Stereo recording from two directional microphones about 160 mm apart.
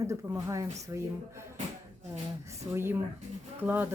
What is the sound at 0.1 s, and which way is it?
Speech, 20° right (ahead or behind).